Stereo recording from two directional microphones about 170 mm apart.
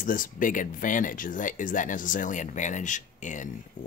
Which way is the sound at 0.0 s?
55° left (ahead or behind).